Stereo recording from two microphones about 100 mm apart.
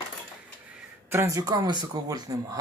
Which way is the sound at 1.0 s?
25° right (ahead or behind).